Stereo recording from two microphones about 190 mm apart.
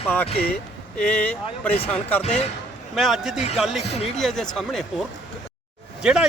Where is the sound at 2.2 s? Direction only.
35° left (ahead or behind).